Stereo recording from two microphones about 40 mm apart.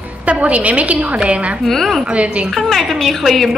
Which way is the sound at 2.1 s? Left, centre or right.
Right.